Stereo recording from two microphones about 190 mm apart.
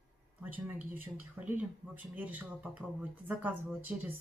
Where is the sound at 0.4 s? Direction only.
10° right (ahead or behind).